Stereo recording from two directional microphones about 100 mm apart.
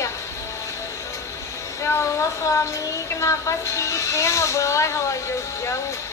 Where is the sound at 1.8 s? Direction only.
30° left (ahead or behind).